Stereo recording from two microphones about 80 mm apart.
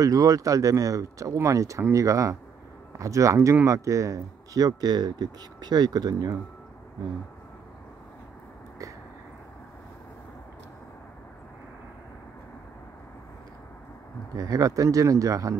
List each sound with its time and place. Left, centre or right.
0.0 s speech: right
14.3 s speech: right